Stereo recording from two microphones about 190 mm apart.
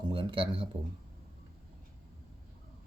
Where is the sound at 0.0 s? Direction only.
25° right (ahead or behind).